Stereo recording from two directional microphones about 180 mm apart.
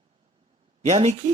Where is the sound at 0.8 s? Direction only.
40° right (ahead or behind).